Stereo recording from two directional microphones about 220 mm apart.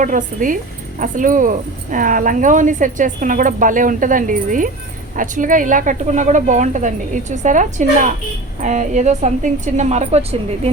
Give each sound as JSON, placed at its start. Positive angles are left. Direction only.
{"t": 0.0, "sound": "a woman's voice", "side_deg": -35}